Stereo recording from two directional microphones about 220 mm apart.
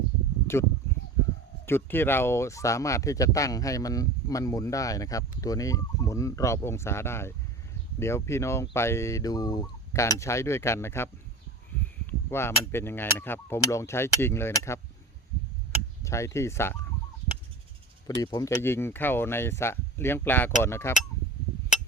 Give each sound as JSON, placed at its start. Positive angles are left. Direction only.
{"t": 0.5, "sound": "speech", "side_deg": 10}
{"t": 11.7, "sound": "a sound", "side_deg": 10}
{"t": 12.3, "sound": "speech", "side_deg": 10}
{"t": 16.0, "sound": "speech", "side_deg": 15}
{"t": 18.2, "sound": "speech", "side_deg": 15}